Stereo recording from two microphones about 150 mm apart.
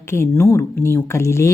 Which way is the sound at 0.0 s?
15° left (ahead or behind).